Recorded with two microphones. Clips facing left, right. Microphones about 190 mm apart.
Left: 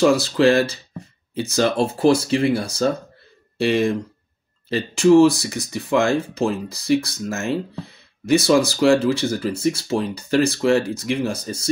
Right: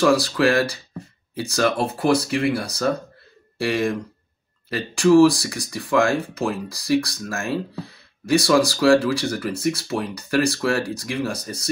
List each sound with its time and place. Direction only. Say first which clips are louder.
0.0 s speech: left 2 dB; 25° left (ahead or behind)